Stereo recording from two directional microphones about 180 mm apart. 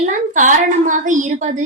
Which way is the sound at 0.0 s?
45° right (ahead or behind).